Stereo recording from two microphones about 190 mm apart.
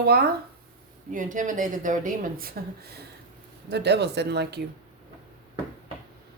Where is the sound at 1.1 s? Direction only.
45° right (ahead or behind); by 4.6 s 60° right (ahead or behind).